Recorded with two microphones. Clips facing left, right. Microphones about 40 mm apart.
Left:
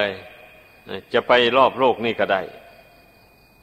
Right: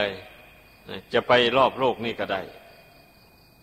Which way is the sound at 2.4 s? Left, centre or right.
Centre.